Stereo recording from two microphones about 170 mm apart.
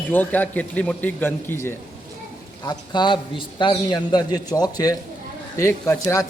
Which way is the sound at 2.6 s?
25° left (ahead or behind).